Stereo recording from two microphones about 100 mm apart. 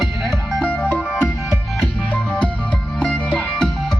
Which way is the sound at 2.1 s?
15° left (ahead or behind).